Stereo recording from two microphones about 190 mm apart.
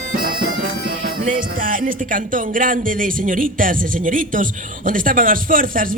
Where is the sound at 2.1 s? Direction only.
45° right (ahead or behind).